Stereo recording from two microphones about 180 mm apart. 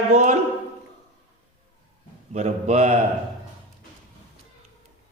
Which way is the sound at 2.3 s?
40° right (ahead or behind).